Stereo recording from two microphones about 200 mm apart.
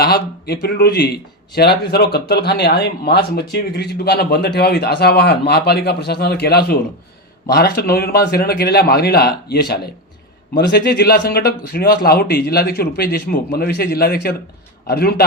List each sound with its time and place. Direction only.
0.0 s a man's voice: 50° left (ahead or behind)